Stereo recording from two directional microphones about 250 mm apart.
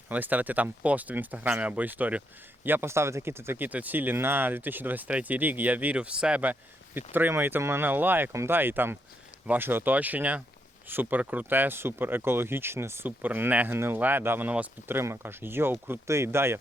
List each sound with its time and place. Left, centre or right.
0.1 s speech: centre